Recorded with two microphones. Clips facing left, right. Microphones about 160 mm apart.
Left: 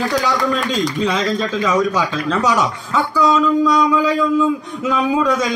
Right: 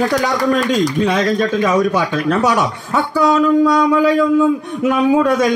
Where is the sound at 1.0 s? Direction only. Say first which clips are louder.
Right 3 dB; 55° right (ahead or behind).